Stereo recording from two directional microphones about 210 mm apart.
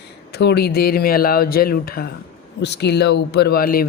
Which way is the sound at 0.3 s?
50° left (ahead or behind).